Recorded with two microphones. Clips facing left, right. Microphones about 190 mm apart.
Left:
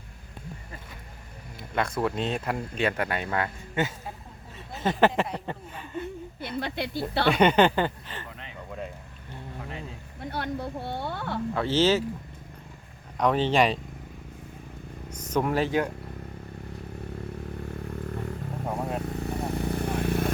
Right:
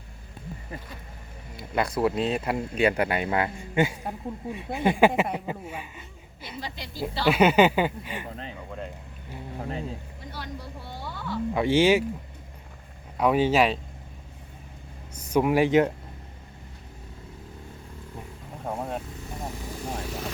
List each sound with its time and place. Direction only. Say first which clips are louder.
1.5 s speech: right 2 dB; 5° right (ahead or behind)
6.6 s speech: left 8 dB; 60° left (ahead or behind)
7.3 s speech: right 2 dB; 5° right (ahead or behind)
9.6 s speech: right 7 dB; 40° right (ahead or behind)
10.2 s speech: left 7 dB; 60° left (ahead or behind)
11.5 s speech: right 3 dB; 15° right (ahead or behind)
13.1 s speech: right 2 dB; 10° right (ahead or behind)
15.1 s speech: right 4 dB; 10° right (ahead or behind)
18.6 s vehicle: even; centre (ahead or behind)
19.0 s vehicle: left 6 dB; 65° left (ahead or behind)